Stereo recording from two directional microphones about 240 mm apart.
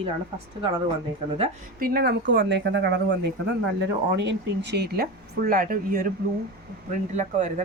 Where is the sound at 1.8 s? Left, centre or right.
Right.